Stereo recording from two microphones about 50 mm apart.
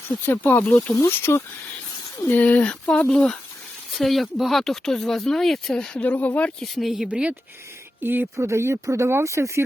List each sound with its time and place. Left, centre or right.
0.3 s speech: left
0.9 s speech: left
2.2 s speech: left
2.6 s speech: left
3.9 s speech: centre
5.7 s speech: centre
6.1 s speech: left
6.6 s speech: centre
7.1 s speech: right
8.0 s speech: right
8.4 s speech: right
9.2 s speech: right